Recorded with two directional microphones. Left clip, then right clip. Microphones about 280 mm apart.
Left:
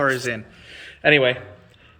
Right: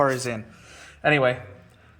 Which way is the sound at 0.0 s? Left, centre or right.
Centre.